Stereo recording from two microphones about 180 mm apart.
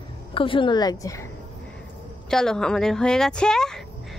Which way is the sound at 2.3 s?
5° left (ahead or behind).